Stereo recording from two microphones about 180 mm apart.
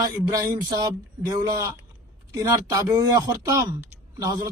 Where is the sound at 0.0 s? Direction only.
20° right (ahead or behind).